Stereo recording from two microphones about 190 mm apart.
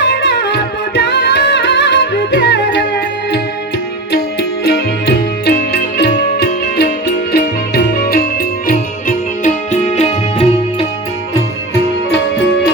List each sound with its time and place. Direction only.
0.0 s music: 65° left (ahead or behind)
4.6 s music: 60° left (ahead or behind); by 10.8 s 35° left (ahead or behind)